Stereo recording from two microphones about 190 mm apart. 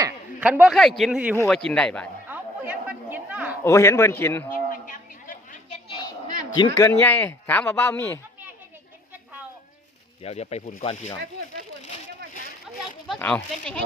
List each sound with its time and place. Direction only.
0.3 s speech: 5° right (ahead or behind)
2.3 s a sound: 10° right (ahead or behind)
3.6 s speech: 15° left (ahead or behind)
4.5 s chatter: 45° left (ahead or behind)
5.9 s a sound: 25° left (ahead or behind)
6.6 s speech: 20° left (ahead or behind)
10.2 s speech: 35° left (ahead or behind)
13.1 s speech: 5° left (ahead or behind)